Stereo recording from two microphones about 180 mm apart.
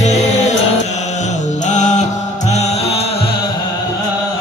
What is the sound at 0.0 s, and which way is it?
Music, 40° left (ahead or behind).